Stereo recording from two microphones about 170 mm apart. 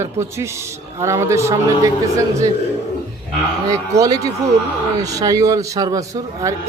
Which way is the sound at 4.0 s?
20° right (ahead or behind).